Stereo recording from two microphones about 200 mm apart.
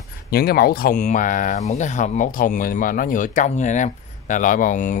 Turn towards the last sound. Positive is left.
turn(degrees=40)  # may be behind; listen again after turning